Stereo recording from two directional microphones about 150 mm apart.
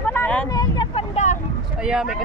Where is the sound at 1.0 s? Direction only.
50° left (ahead or behind).